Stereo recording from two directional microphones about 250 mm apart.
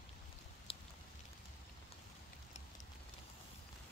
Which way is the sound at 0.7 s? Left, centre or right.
Left.